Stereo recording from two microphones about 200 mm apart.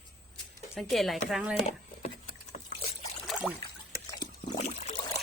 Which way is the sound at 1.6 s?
35° left (ahead or behind).